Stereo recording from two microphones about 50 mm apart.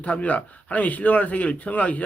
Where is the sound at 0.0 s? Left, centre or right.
Left.